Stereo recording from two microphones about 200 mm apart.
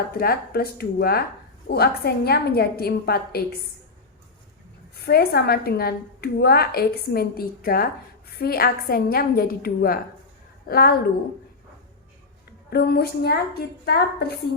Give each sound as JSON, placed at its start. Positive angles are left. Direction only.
{"t": 0.1, "sound": "a woman's voice", "side_deg": 50}
{"t": 5.0, "sound": "a woman's voice", "side_deg": 50}
{"t": 12.7, "sound": "a woman's voice", "side_deg": 55}